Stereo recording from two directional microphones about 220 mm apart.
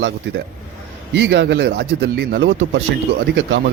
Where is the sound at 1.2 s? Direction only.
55° right (ahead or behind).